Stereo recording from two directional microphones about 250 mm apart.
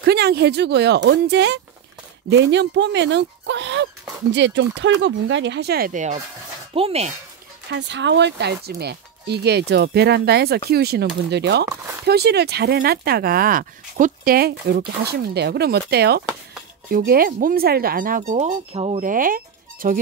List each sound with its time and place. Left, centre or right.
0.0 s speech: right
7.7 s speech: right
11.7 s a sound: centre
12.1 s speech: right